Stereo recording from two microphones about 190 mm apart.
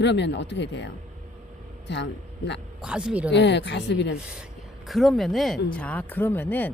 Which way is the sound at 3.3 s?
65° left (ahead or behind).